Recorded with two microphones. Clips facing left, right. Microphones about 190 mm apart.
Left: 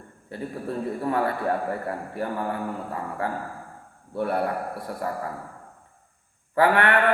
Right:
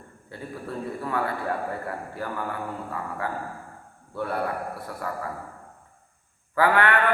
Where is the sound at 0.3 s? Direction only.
25° left (ahead or behind).